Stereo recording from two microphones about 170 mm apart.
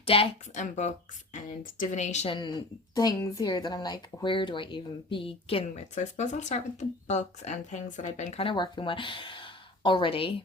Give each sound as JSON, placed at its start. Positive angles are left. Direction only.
{"t": 0.0, "sound": "a woman's voice", "side_deg": 35}
{"t": 2.3, "sound": "a woman's voice", "side_deg": 25}